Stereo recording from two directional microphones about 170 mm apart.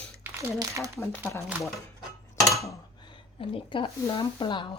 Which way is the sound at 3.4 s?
30° left (ahead or behind).